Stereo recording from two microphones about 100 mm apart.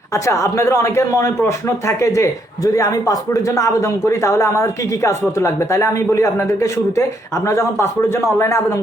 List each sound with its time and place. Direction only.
0.1 s speech: 30° left (ahead or behind)